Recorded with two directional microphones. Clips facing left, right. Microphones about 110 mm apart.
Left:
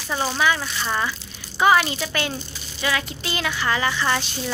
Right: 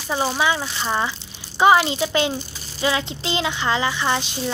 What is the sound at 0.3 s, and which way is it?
Speech, 20° right (ahead or behind).